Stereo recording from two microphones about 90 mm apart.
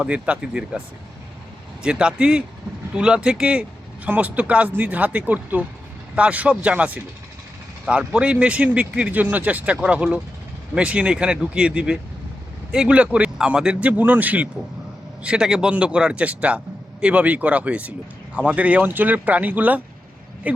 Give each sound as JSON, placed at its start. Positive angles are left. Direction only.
{"t": 0.0, "sound": "a man's voice", "side_deg": -15}
{"t": 1.8, "sound": "a man's voice", "side_deg": -10}